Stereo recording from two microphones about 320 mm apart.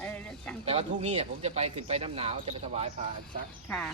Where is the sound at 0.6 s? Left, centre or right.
Centre.